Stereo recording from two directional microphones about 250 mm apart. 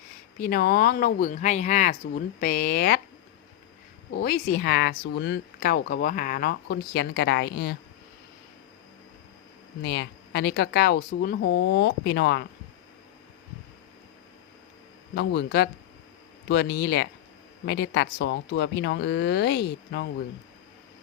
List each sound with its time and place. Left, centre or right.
0.3 s speech: left
4.1 s speech: left
9.8 s speech: left
15.1 s speech: left